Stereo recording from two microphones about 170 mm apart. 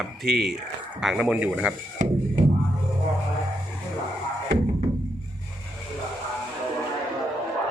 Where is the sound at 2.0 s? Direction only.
45° right (ahead or behind).